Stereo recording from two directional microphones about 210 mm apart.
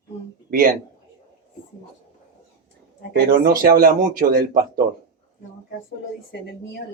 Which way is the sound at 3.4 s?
45° right (ahead or behind).